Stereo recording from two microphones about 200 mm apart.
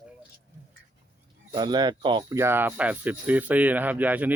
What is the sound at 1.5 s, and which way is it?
Speech, 20° right (ahead or behind).